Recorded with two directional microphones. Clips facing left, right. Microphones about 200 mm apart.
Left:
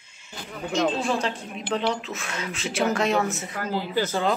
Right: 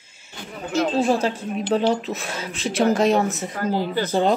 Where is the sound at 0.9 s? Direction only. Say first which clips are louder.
Right 6 dB; 40° right (ahead or behind).